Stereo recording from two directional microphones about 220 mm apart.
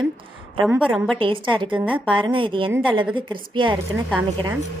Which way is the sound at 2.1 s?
20° right (ahead or behind).